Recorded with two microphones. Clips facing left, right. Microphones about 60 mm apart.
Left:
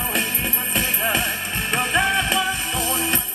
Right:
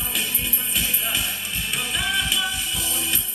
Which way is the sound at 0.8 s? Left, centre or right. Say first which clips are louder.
Left 5 dB; left.